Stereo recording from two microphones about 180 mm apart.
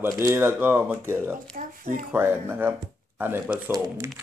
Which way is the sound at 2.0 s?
10° right (ahead or behind).